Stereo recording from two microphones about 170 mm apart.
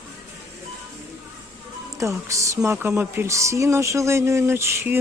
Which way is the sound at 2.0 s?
20° right (ahead or behind).